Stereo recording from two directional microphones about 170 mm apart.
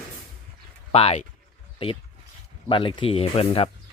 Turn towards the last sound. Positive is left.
turn(degrees=35)  # may be behind; listen again after turning